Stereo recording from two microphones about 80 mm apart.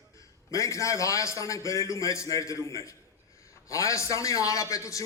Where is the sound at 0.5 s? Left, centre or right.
Left.